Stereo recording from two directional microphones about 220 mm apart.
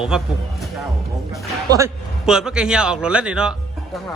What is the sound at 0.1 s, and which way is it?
Speech, 5° right (ahead or behind).